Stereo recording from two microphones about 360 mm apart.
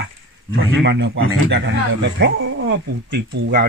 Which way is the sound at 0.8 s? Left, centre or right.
Right.